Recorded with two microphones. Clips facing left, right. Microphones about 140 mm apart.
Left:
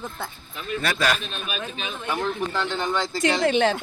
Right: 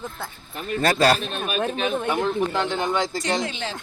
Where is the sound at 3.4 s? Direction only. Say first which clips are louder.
Left 11 dB; 60° left (ahead or behind).